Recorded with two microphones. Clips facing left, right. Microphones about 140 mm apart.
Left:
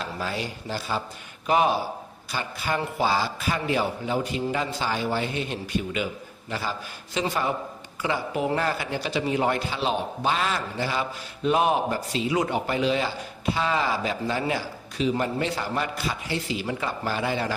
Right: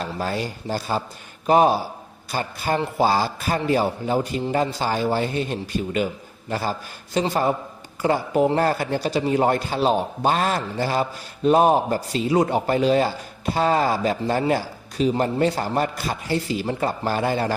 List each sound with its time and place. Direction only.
0.0 s a man's voice: 45° right (ahead or behind)